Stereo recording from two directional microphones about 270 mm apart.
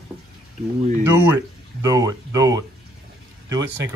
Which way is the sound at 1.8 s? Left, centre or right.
Centre.